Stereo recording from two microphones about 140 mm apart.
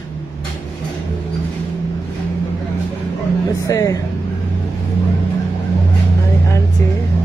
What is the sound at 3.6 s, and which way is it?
Speech, 25° left (ahead or behind).